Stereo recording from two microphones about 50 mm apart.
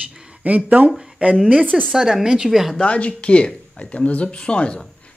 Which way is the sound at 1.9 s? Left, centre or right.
Centre.